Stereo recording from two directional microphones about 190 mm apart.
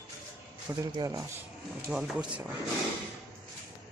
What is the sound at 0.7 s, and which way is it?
Speech, 15° right (ahead or behind).